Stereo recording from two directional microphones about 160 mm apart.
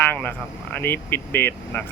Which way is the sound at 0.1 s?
10° left (ahead or behind).